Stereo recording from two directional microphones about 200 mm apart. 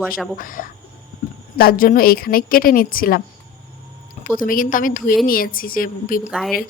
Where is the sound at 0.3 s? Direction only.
45° left (ahead or behind).